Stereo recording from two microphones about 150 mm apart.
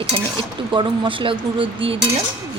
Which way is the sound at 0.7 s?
35° right (ahead or behind).